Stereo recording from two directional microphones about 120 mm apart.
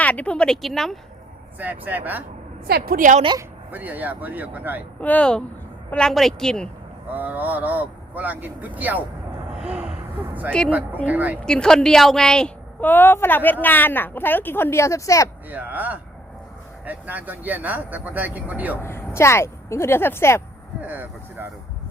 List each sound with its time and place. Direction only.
0.0 s speech: 10° left (ahead or behind)
1.5 s speech: 15° right (ahead or behind)
3.0 s speech: 90° right
3.7 s speech: 15° right (ahead or behind)
4.9 s a woman's voice: 10° left (ahead or behind)
7.1 s speech: 15° right (ahead or behind)
9.5 s a sound: 10° right (ahead or behind)
11.0 s speech: 15° right (ahead or behind)
11.4 s a woman's voice: 5° left (ahead or behind); by 15.3 s 25° left (ahead or behind)
15.4 s speech: 15° right (ahead or behind)
18.8 s speech: 20° left (ahead or behind)
20.8 s vehicle: 15° right (ahead or behind)